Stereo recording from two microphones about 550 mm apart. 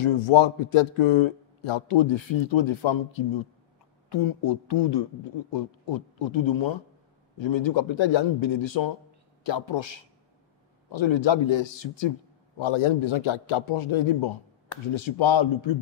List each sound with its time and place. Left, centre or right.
0.0 s a man's voice: left
4.4 s a man's voice: left